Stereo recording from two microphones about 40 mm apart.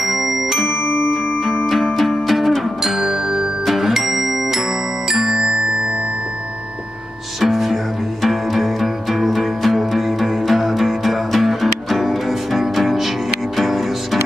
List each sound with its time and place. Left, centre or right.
0.0 s music: centre
2.0 s music: centre
7.3 s music: centre